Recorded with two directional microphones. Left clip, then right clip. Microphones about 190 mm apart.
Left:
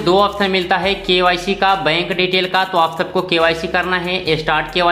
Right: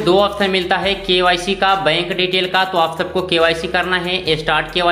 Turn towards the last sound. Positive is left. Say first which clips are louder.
# left 1 dB
turn(degrees=10)  # may be behind; listen again after turning